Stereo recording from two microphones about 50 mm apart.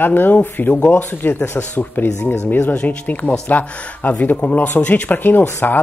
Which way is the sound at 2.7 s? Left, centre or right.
Left.